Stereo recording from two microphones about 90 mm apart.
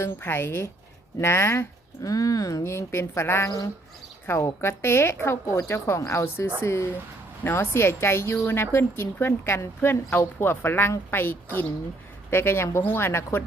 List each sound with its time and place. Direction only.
0.0 s a woman's voice: 25° left (ahead or behind)
2.0 s a woman's voice: 40° left (ahead or behind); by 13.4 s 25° left (ahead or behind)